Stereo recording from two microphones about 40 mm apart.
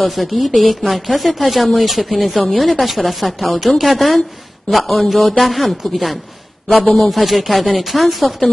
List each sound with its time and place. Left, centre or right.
0.0 s speech: centre